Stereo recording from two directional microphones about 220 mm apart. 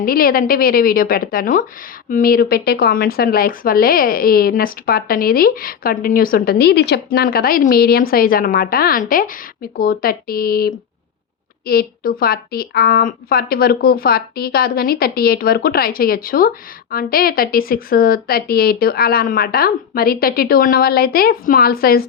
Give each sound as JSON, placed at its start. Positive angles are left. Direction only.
{"t": 0.0, "sound": "a woman's voice", "side_deg": 40}